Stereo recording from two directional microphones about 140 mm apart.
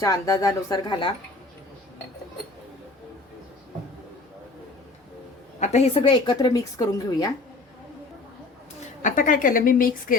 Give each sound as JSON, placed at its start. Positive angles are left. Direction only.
{"t": 0.0, "sound": "speech", "side_deg": 25}
{"t": 5.5, "sound": "a woman's voice", "side_deg": 55}
{"t": 9.0, "sound": "a woman's voice", "side_deg": 65}